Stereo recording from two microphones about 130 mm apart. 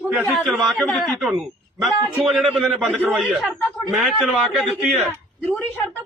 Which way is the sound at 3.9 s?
Centre (ahead or behind).